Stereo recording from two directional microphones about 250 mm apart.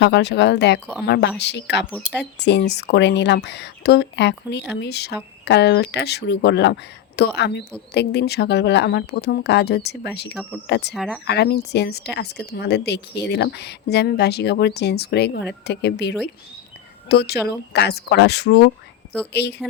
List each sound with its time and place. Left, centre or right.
0.0 s speech: left
1.9 s speech: centre
2.4 s speech: left
10.9 s speech: centre
11.3 s speech: left